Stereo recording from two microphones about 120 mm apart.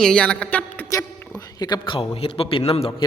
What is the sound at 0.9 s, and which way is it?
A man's voice, 30° left (ahead or behind).